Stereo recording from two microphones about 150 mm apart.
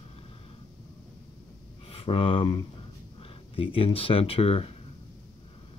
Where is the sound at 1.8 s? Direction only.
40° left (ahead or behind).